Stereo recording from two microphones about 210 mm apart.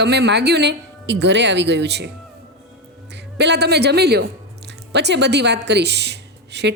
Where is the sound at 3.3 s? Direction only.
55° right (ahead or behind).